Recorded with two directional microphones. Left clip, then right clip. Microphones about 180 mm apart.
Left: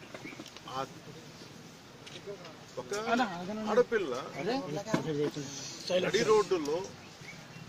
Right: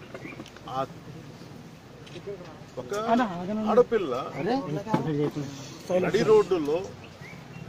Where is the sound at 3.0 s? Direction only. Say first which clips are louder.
Right 6 dB; 45° right (ahead or behind).